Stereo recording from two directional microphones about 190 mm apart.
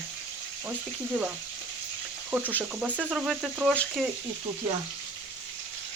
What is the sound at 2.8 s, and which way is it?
Speech, 10° right (ahead or behind).